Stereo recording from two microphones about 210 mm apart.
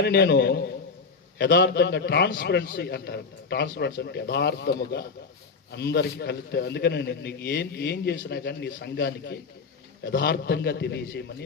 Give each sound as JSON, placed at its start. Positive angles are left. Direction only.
{"t": 0.0, "sound": "a man's voice", "side_deg": 50}